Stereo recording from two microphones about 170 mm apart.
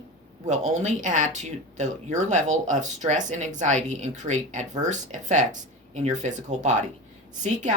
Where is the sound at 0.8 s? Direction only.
45° right (ahead or behind).